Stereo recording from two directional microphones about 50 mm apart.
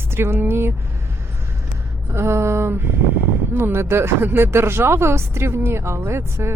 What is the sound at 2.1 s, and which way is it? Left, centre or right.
Speech, right.